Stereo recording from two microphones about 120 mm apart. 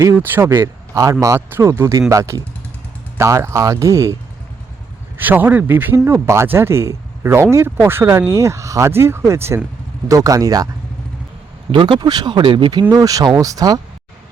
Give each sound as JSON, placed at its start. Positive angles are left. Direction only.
{"t": 0.0, "sound": "speech", "side_deg": -20}
{"t": 1.4, "sound": "speech", "side_deg": -15}
{"t": 11.7, "sound": "speech", "side_deg": -40}
{"t": 12.9, "sound": "speech", "side_deg": -30}